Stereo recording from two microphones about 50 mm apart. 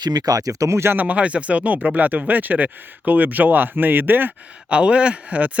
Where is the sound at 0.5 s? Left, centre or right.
Right.